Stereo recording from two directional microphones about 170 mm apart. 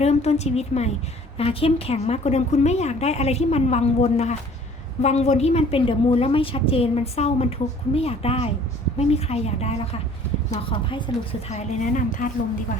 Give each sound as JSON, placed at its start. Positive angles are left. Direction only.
{"t": 0.0, "sound": "a woman's voice", "side_deg": 40}